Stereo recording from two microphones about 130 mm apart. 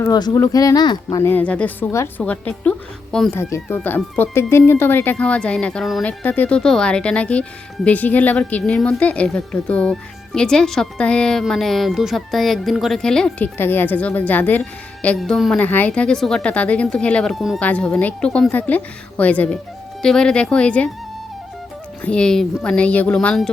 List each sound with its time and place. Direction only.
0.1 s speech: 30° left (ahead or behind)
1.2 s a woman's voice: 15° left (ahead or behind)
13.6 s speech: 15° left (ahead or behind)
15.5 s speech: 15° left (ahead or behind)
17.6 s speech: 10° left (ahead or behind)
22.0 s speech: 5° left (ahead or behind)